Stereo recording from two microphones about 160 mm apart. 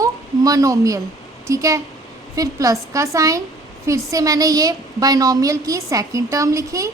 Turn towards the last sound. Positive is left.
turn(degrees=-20)  # may be behind; listen again after turning